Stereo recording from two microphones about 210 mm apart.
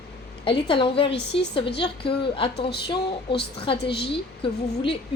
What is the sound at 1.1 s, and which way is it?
Speech, 55° left (ahead or behind).